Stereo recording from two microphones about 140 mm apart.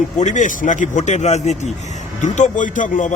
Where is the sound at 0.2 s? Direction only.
60° left (ahead or behind).